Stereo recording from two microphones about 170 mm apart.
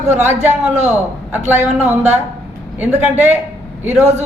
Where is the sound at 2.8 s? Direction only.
10° right (ahead or behind).